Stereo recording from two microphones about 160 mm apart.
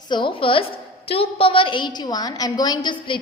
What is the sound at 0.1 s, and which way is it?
A woman's voice, 30° left (ahead or behind).